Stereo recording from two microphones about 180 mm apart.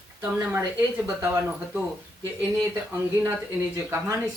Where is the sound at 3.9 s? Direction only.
10° right (ahead or behind).